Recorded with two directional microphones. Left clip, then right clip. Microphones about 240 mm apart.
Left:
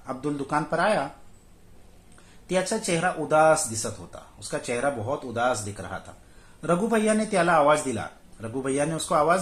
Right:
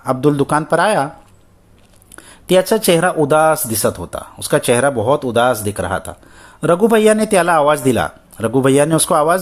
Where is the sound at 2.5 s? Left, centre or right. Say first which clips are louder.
Right 13 dB; right.